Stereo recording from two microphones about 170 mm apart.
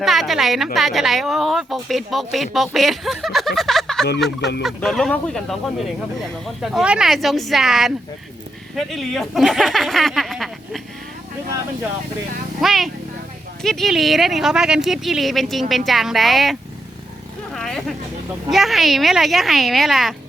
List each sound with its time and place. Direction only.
0.0 s speech: centre (ahead or behind)
4.4 s speech: 90° left
4.6 s speech: 5° left (ahead or behind)
12.5 s speech: centre (ahead or behind)
17.5 s vehicle: centre (ahead or behind)
18.5 s speech: centre (ahead or behind)